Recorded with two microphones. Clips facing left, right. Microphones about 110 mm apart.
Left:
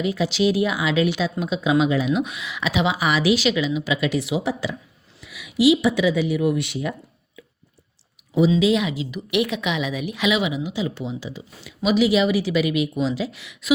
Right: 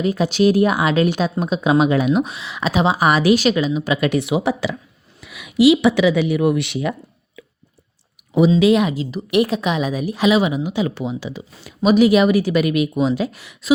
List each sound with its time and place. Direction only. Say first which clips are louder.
0.0 s a woman's voice: right 4 dB; 45° right (ahead or behind)
2.2 s a woman's voice: right 3 dB; 35° right (ahead or behind); by 4.8 s 75° right (ahead or behind)
5.2 s speech: right 4 dB; 55° right (ahead or behind); by 6.9 s 75° right (ahead or behind)
8.5 s a woman's voice: right 5 dB; 55° right (ahead or behind)
11.6 s a woman's voice: right 5 dB; 45° right (ahead or behind)